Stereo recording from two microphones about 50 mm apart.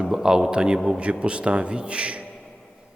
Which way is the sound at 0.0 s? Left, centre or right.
Centre.